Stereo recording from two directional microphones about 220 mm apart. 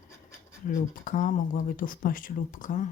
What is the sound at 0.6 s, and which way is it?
Speech, 35° left (ahead or behind).